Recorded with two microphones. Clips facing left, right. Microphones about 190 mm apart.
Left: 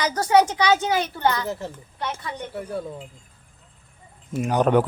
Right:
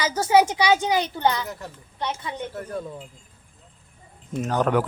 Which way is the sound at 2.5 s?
10° left (ahead or behind).